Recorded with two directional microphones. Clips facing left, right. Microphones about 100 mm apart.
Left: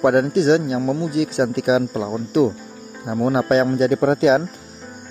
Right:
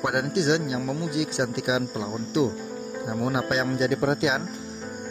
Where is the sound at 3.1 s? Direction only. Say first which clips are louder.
Left 9 dB; 40° left (ahead or behind).